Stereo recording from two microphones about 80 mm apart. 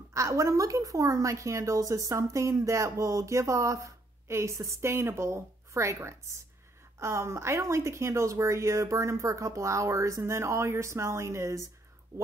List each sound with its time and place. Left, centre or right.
0.1 s a woman's voice: right